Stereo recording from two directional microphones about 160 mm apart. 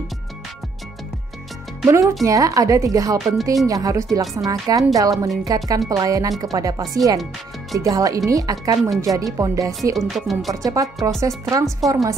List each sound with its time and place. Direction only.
1.9 s speech: 20° right (ahead or behind)
9.9 s speech: centre (ahead or behind)
10.5 s speech: 20° right (ahead or behind)